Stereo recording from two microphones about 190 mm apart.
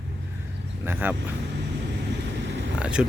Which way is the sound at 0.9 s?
10° right (ahead or behind).